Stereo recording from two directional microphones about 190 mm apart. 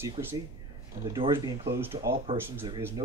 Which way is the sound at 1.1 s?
20° right (ahead or behind).